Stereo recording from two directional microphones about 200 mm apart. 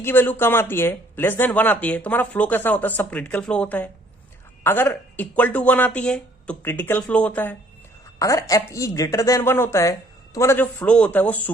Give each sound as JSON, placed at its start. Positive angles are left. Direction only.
{"t": 0.0, "sound": "speech", "side_deg": 10}